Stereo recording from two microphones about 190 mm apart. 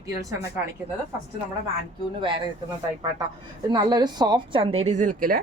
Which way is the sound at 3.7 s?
20° right (ahead or behind).